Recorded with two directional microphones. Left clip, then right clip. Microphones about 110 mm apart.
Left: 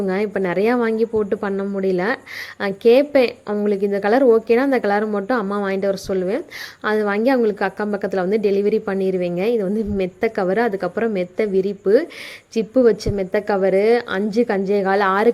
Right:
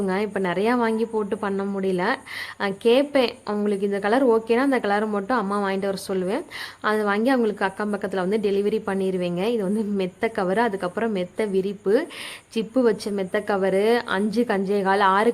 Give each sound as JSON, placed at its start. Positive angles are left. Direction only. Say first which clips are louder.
{"t": 0.0, "sound": "a woman's voice", "louder": "left 4 dB", "side_deg": 25}